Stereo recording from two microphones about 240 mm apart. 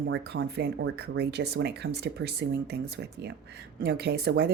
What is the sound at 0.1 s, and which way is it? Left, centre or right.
Speech, right.